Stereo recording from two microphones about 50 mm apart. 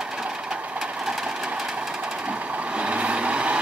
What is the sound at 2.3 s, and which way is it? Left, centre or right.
Vehicle, right.